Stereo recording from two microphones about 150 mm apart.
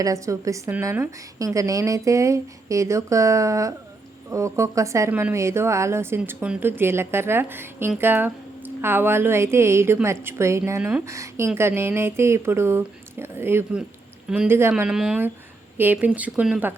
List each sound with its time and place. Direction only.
0.0 s a woman's voice: 20° right (ahead or behind)